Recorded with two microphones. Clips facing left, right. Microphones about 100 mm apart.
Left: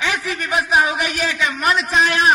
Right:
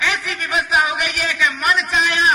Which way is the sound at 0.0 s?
30° left (ahead or behind).